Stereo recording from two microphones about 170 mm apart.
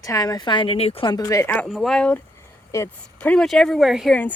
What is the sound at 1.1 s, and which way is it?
Speech, 20° left (ahead or behind).